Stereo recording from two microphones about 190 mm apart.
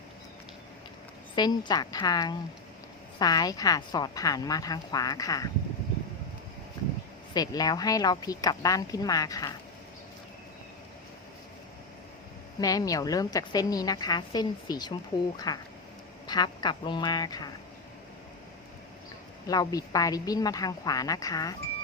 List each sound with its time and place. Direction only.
1.4 s a woman's voice: 20° left (ahead or behind)
7.3 s a woman's voice: 20° left (ahead or behind)
12.5 s a woman's voice: 20° left (ahead or behind)
19.5 s a woman's voice: 20° left (ahead or behind)